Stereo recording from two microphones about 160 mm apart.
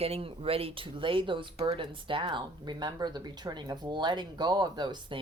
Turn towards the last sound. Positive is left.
turn(degrees=-30)  # may be behind; listen again after turning